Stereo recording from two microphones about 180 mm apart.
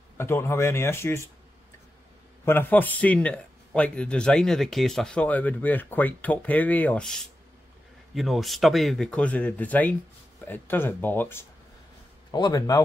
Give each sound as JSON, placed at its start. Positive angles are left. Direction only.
{"t": 0.2, "sound": "a man's voice", "side_deg": 15}
{"t": 2.4, "sound": "a man's voice", "side_deg": 10}
{"t": 12.3, "sound": "speech", "side_deg": 25}